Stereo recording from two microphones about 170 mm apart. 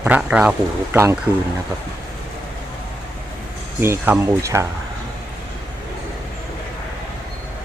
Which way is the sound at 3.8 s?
10° right (ahead or behind).